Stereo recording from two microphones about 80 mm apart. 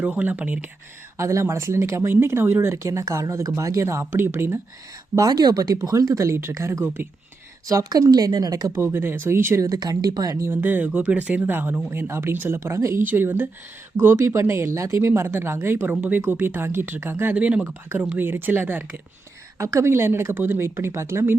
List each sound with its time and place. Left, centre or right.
0.0 s speech: centre
1.1 s speech: right
5.1 s speech: right
6.8 s a woman's voice: right
7.9 s speech: right
8.7 s speech: right
9.6 s speech: right
10.6 s a woman's voice: right
13.1 s a woman's voice: right
17.3 s a woman's voice: centre
19.5 s speech: right